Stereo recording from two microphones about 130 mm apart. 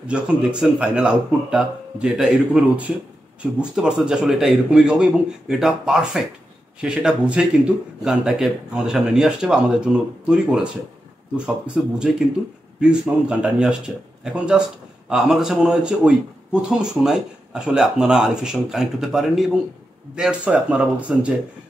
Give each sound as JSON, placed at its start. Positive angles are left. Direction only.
{"t": 0.1, "sound": "speech", "side_deg": -10}